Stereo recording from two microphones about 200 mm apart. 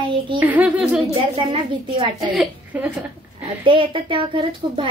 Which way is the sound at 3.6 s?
25° right (ahead or behind).